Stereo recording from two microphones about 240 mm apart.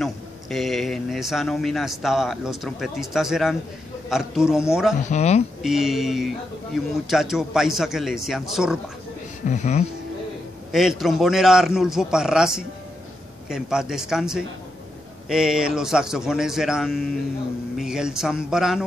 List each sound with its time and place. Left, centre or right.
0.0 s speech: centre
5.0 s speech: left
5.6 s speech: centre
9.5 s speech: left
10.7 s speech: centre